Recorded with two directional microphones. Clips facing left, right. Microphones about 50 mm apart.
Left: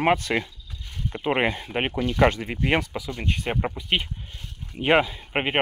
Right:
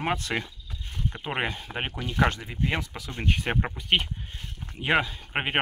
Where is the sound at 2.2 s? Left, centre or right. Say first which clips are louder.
Left 4 dB; left.